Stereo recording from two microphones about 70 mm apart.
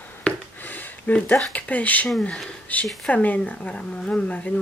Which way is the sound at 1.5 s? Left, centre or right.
Left.